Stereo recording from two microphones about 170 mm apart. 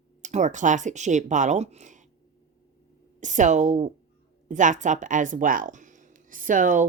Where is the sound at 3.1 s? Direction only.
45° right (ahead or behind).